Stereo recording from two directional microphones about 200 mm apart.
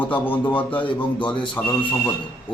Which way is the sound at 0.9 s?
25° left (ahead or behind).